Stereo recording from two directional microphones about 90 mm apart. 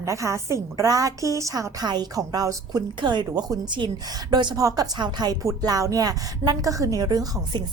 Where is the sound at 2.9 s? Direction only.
55° right (ahead or behind).